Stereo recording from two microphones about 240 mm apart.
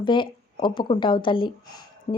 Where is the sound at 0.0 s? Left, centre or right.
Centre.